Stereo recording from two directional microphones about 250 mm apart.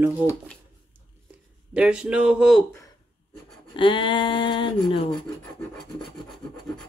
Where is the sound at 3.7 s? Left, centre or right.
Centre.